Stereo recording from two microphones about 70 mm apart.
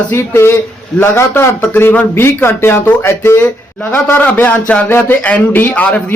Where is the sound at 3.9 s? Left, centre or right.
Left.